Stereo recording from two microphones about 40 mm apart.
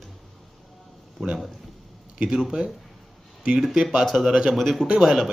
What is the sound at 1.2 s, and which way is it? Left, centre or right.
Speech, centre.